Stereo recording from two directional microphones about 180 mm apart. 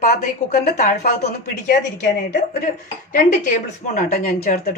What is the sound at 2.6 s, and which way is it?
A woman's voice, 45° left (ahead or behind).